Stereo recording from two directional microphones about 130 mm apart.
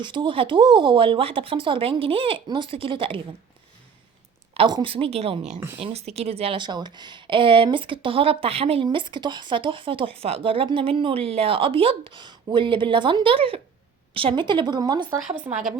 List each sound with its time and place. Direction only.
0.0 s a woman's voice: 35° right (ahead or behind)
4.5 s speech: 40° right (ahead or behind)
5.5 s speech: 20° right (ahead or behind)
5.8 s a woman's voice: 55° right (ahead or behind); by 15.2 s 30° right (ahead or behind)
15.5 s speech: 15° right (ahead or behind)